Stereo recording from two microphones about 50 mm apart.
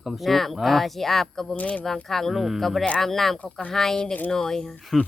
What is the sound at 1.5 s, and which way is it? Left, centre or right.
Speech, left.